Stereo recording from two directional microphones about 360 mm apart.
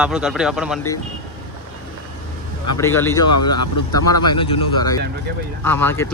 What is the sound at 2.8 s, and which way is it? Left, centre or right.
Speech, centre.